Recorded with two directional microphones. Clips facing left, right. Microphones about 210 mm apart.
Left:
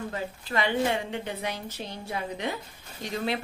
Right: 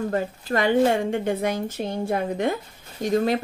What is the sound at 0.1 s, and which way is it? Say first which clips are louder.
A woman's voice: right 7 dB; 45° right (ahead or behind).